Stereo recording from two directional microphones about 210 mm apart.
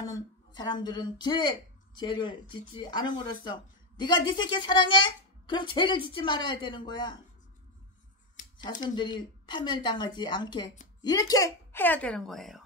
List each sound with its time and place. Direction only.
0.1 s speech: 20° left (ahead or behind)
8.9 s speech: 20° left (ahead or behind); by 12.6 s centre (ahead or behind)